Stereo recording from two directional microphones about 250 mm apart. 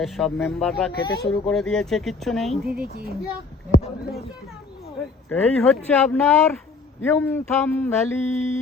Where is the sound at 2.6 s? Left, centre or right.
Right.